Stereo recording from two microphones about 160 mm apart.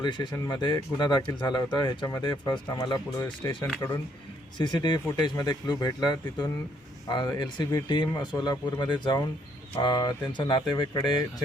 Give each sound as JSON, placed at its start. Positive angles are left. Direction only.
{"t": 0.0, "sound": "speech", "side_deg": 30}
{"t": 3.8, "sound": "speech", "side_deg": 15}
{"t": 4.5, "sound": "speech", "side_deg": 30}